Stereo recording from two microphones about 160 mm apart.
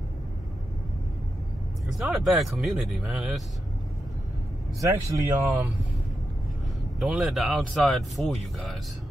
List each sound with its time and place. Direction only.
1.9 s speech: centre (ahead or behind)
4.7 s speech: 20° right (ahead or behind)
7.0 s speech: centre (ahead or behind)